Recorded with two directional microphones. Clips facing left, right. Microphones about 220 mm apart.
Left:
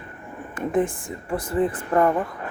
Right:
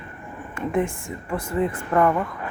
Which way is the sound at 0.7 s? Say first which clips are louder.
Left 2 dB; 35° left (ahead or behind).